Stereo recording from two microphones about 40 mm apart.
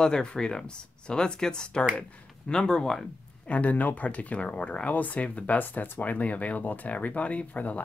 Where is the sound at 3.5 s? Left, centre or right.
Left.